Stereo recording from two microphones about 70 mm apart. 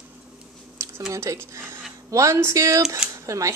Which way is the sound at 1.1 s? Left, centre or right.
Right.